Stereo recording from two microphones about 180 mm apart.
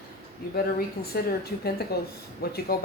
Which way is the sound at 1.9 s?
60° left (ahead or behind).